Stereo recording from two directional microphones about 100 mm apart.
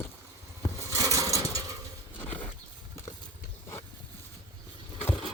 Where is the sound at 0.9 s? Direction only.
35° right (ahead or behind).